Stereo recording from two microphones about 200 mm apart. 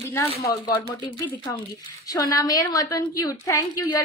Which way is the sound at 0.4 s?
15° left (ahead or behind).